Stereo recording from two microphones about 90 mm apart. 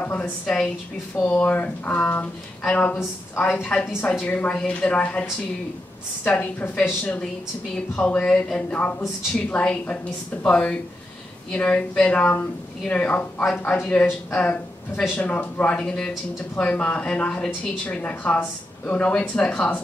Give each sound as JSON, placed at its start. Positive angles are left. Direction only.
{"t": 0.0, "sound": "speech", "side_deg": 15}
{"t": 6.2, "sound": "a woman's voice", "side_deg": 20}
{"t": 7.7, "sound": "speech", "side_deg": 10}